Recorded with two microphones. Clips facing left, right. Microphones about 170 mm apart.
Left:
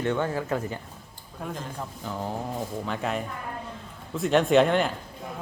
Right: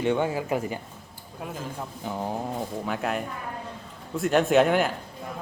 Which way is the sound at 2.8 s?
5° right (ahead or behind).